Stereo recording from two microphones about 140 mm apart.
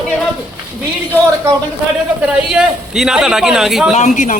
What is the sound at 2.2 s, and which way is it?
Speech, 5° right (ahead or behind).